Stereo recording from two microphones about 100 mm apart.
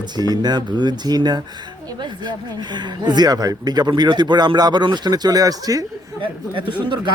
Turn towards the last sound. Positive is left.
turn(degrees=-55)  # may be behind; listen again after turning